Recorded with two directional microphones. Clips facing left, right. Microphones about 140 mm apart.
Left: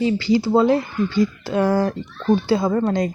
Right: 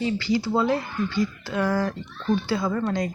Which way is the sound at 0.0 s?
25° left (ahead or behind).